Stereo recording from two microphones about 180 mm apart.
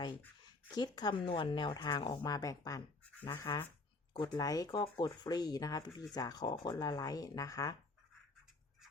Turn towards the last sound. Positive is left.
turn(degrees=20)  # may be behind; listen again after turning